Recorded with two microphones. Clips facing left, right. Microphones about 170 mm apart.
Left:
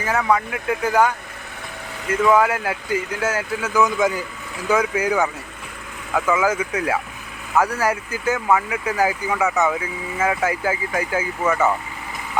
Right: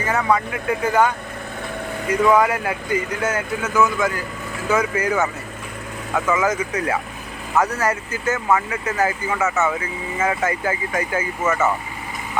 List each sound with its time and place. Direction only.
0.0 s speech: 5° left (ahead or behind)
2.2 s speech: 5° left (ahead or behind)